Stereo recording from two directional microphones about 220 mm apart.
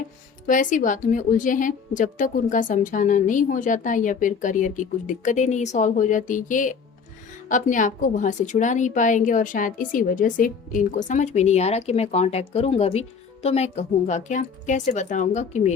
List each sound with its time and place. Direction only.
0.4 s a woman's voice: 35° left (ahead or behind)